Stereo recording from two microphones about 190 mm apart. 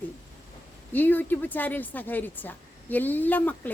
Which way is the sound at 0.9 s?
10° left (ahead or behind).